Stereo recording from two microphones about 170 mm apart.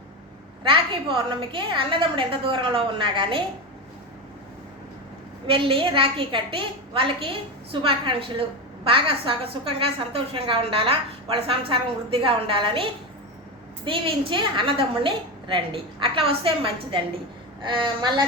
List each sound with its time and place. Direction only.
0.7 s a woman's voice: 30° right (ahead or behind)
5.5 s a woman's voice: 30° right (ahead or behind)